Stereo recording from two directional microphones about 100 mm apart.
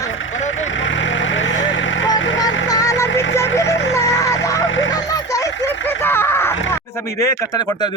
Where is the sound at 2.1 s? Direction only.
40° left (ahead or behind).